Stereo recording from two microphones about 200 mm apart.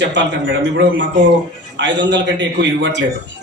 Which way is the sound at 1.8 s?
60° right (ahead or behind).